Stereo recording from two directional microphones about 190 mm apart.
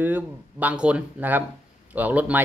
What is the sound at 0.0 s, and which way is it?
Speech, 10° right (ahead or behind).